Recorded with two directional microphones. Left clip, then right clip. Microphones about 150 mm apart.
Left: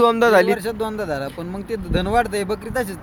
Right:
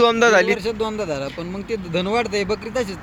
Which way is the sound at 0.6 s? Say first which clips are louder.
Right 1 dB; 10° left (ahead or behind).